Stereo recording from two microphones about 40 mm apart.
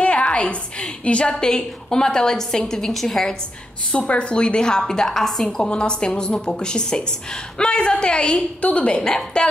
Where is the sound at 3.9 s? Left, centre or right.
Left; by 5.6 s centre.